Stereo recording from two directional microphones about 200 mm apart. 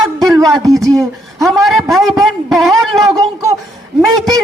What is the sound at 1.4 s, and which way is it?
A man's voice, centre (ahead or behind).